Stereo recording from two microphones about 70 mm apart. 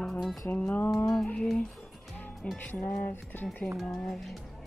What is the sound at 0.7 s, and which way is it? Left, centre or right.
Music, left.